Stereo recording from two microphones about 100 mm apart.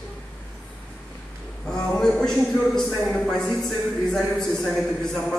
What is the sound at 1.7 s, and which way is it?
A man's voice, 5° left (ahead or behind).